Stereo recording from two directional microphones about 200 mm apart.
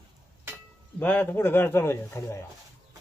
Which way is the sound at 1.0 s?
10° left (ahead or behind).